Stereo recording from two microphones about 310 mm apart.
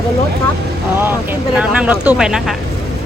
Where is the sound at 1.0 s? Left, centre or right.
Centre.